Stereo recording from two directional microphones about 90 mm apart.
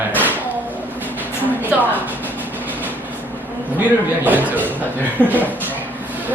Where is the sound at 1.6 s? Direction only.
20° right (ahead or behind).